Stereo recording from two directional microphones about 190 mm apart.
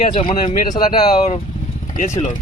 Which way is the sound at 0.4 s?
40° left (ahead or behind).